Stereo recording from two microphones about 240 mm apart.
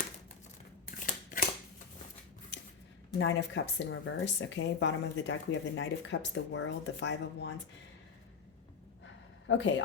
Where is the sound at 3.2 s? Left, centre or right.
Left.